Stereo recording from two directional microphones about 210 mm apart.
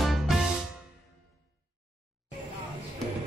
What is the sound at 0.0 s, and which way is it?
Music, centre (ahead or behind).